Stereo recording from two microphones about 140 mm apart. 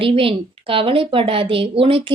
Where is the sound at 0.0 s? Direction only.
40° right (ahead or behind).